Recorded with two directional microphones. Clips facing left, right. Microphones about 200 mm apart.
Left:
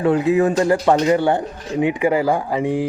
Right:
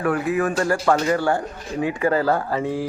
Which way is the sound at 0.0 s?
25° left (ahead or behind).